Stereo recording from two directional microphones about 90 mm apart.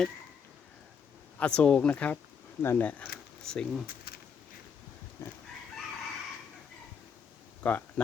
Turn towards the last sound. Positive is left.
turn(degrees=15)  # may be behind; listen again after turning